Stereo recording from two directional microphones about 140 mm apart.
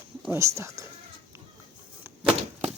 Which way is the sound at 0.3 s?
20° right (ahead or behind).